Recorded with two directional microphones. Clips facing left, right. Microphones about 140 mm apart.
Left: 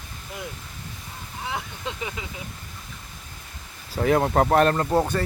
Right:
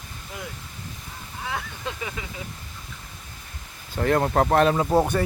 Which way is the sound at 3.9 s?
5° left (ahead or behind).